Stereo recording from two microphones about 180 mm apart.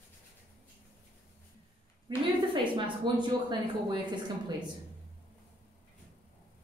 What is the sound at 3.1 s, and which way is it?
Speech, 25° right (ahead or behind).